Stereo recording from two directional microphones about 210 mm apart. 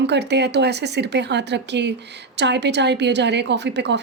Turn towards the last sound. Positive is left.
turn(degrees=-55)  # may be behind; listen again after turning